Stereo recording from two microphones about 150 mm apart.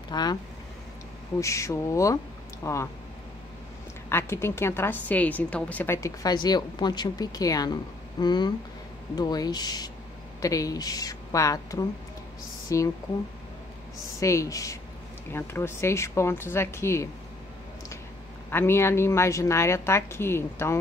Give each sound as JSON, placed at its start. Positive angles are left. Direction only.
{"t": 0.1, "sound": "speech", "side_deg": 25}
{"t": 1.4, "sound": "a woman's voice", "side_deg": 20}
{"t": 4.1, "sound": "a woman's voice", "side_deg": 15}
{"t": 14.2, "sound": "a woman's voice", "side_deg": 20}
{"t": 18.5, "sound": "a woman's voice", "side_deg": 15}